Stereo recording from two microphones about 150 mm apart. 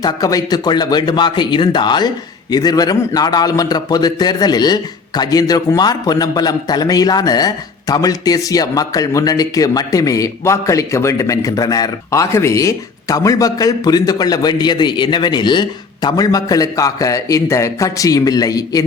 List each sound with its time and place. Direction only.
0.0 s a man's voice: 25° left (ahead or behind)